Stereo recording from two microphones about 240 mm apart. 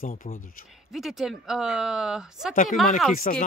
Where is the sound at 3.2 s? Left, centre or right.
Left.